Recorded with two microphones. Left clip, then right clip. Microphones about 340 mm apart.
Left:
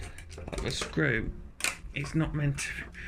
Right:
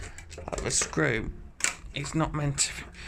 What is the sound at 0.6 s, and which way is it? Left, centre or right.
Speech, centre.